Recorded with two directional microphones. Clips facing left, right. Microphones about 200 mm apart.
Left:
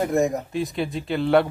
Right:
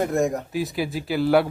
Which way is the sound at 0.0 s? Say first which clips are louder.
Left 1 dB; centre (ahead or behind).